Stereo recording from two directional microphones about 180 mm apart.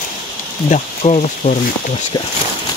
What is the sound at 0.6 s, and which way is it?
Speech, 40° left (ahead or behind).